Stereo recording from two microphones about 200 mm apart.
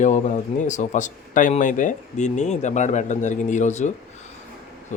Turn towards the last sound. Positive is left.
turn(degrees=35)  # may be behind; listen again after turning